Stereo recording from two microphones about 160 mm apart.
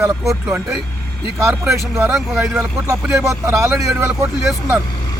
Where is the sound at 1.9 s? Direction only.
5° right (ahead or behind).